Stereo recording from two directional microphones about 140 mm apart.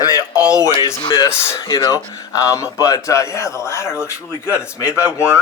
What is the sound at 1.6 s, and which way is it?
Speech, 30° left (ahead or behind).